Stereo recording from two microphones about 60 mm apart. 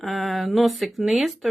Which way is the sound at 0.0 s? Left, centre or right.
Centre.